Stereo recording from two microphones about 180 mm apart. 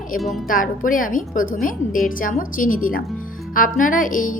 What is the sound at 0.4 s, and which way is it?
A woman's voice, 50° left (ahead or behind).